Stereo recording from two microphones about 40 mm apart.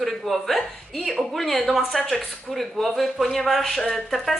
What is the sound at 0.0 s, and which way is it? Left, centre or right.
Speech, centre.